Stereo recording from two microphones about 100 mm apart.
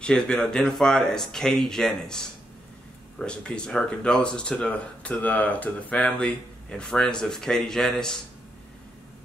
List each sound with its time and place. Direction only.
0.0 s speech: 5° left (ahead or behind)